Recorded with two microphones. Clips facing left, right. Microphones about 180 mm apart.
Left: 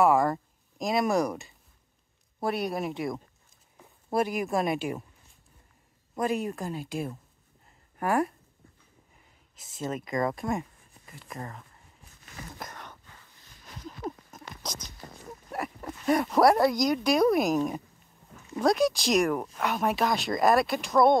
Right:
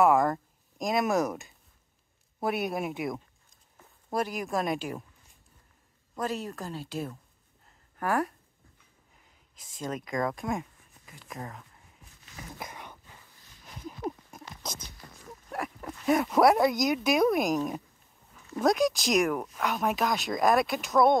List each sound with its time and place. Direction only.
0.0 s speech: centre (ahead or behind)
3.7 s speech: 10° left (ahead or behind)
6.1 s speech: 10° left (ahead or behind)
9.6 s speech: 5° left (ahead or behind)
12.5 s a sound: 10° right (ahead or behind)
15.0 s a sound: 40° left (ahead or behind)
15.5 s speech: 5° left (ahead or behind)